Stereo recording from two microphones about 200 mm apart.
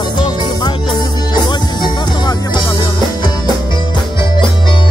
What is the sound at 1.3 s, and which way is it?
Music, 20° left (ahead or behind).